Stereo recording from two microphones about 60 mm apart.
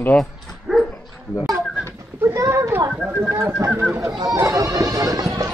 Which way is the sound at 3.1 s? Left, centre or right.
Right.